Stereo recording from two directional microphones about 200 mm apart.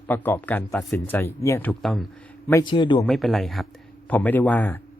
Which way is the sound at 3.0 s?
Centre (ahead or behind).